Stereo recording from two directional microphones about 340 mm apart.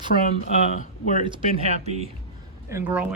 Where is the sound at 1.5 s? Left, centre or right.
Centre.